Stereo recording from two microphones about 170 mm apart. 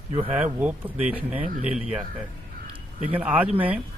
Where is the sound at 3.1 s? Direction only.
10° right (ahead or behind).